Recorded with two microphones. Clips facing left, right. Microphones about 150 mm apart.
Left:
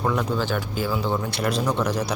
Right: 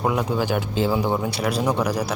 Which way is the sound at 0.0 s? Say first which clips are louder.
Right 2 dB; 15° right (ahead or behind).